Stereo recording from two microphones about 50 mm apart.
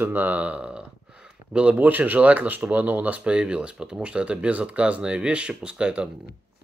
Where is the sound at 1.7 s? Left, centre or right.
Right.